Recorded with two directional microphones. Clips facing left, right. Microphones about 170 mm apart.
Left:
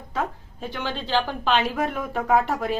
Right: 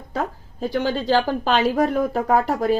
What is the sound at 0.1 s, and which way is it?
A woman's voice, 40° right (ahead or behind).